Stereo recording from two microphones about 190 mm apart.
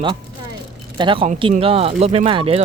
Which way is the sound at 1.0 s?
25° right (ahead or behind).